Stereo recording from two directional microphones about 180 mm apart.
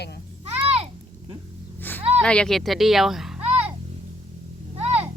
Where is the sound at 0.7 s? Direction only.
35° right (ahead or behind).